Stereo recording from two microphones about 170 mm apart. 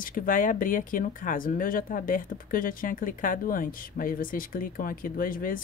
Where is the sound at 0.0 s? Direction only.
55° left (ahead or behind).